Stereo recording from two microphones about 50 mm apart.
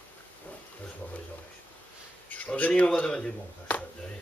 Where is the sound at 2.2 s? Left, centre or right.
Left.